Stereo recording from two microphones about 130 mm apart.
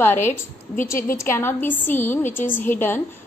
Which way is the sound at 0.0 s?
15° left (ahead or behind).